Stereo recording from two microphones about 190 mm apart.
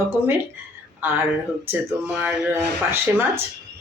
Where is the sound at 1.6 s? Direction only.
10° right (ahead or behind).